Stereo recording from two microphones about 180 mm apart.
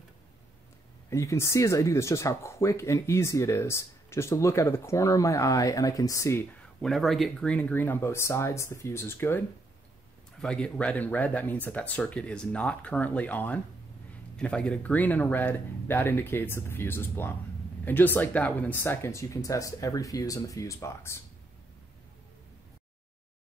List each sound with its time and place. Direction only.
1.1 s speech: 15° left (ahead or behind)
6.8 s speech: centre (ahead or behind)
10.4 s speech: 5° left (ahead or behind)